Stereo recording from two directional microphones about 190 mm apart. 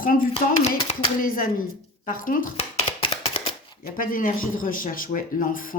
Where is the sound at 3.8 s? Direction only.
50° left (ahead or behind).